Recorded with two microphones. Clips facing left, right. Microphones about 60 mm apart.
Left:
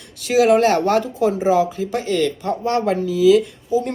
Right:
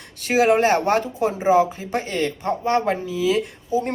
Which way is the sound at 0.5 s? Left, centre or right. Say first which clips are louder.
Left 3 dB; right.